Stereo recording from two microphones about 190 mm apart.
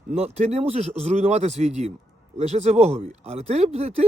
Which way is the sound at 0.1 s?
35° right (ahead or behind).